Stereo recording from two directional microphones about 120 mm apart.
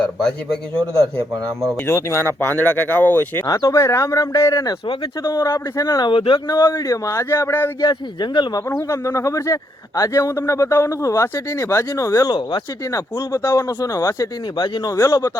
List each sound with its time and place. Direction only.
0.0 s a man's voice: 5° left (ahead or behind)
1.9 s speech: 20° left (ahead or behind)
3.4 s speech: 30° left (ahead or behind)
6.7 s speech: 30° left (ahead or behind)
7.8 s speech: 35° left (ahead or behind)
8.9 s speech: 25° left (ahead or behind)
12.9 s speech: 25° left (ahead or behind)